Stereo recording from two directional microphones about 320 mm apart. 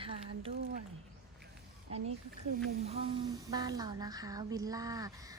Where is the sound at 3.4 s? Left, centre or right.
Centre.